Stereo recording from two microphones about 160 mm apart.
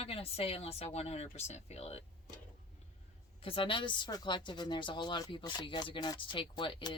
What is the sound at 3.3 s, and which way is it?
Speech, 35° left (ahead or behind).